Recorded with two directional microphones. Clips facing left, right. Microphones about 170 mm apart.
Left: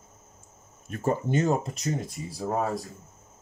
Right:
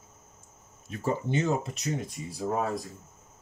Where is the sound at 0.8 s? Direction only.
50° left (ahead or behind).